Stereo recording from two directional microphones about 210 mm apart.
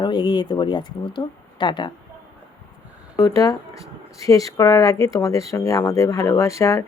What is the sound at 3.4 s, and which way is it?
Speech, 15° left (ahead or behind).